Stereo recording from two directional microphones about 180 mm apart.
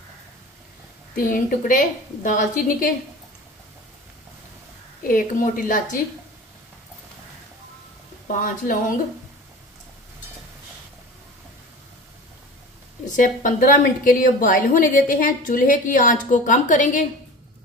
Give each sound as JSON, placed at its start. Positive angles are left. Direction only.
{"t": 1.1, "sound": "a woman's voice", "side_deg": 50}
{"t": 5.0, "sound": "a woman's voice", "side_deg": 50}
{"t": 8.3, "sound": "a woman's voice", "side_deg": 50}
{"t": 13.1, "sound": "a woman's voice", "side_deg": 45}